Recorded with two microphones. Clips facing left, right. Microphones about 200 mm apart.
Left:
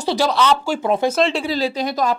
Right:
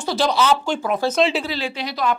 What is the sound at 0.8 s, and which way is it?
Speech, 20° left (ahead or behind).